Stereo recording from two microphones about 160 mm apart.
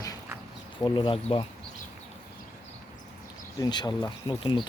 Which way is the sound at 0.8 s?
30° left (ahead or behind).